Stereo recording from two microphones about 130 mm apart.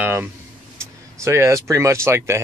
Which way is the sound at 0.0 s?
15° right (ahead or behind).